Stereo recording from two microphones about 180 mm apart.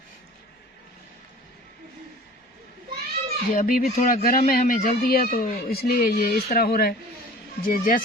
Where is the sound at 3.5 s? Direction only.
50° left (ahead or behind).